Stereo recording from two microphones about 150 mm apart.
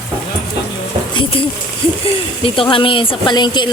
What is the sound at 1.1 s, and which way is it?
Speech, 35° left (ahead or behind).